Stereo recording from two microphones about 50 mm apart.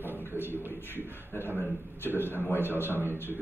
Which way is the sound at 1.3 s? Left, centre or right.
Left.